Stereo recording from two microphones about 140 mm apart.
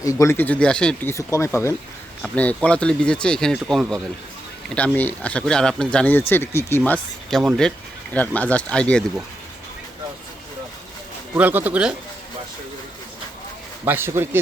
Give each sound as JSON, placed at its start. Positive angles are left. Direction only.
{"t": 0.0, "sound": "speech", "side_deg": 25}
{"t": 1.1, "sound": "speech", "side_deg": 20}
{"t": 2.2, "sound": "speech", "side_deg": 10}
{"t": 11.3, "sound": "speech", "side_deg": -10}
{"t": 13.8, "sound": "speech", "side_deg": -15}